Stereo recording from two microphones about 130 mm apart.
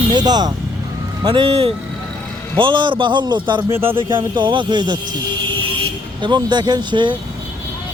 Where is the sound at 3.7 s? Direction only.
15° right (ahead or behind).